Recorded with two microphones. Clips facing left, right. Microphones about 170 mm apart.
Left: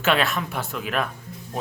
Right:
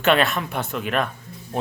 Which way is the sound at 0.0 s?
Centre (ahead or behind).